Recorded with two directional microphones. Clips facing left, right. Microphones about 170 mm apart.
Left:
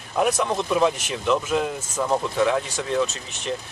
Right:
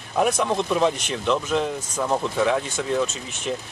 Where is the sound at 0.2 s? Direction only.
Centre (ahead or behind).